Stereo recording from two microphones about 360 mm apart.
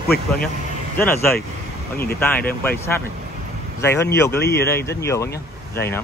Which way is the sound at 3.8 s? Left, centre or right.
Centre.